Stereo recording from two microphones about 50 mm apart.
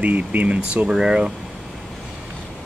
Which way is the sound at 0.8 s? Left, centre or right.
Centre.